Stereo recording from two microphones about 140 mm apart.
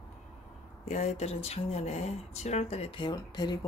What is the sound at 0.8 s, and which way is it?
Speech, 55° left (ahead or behind).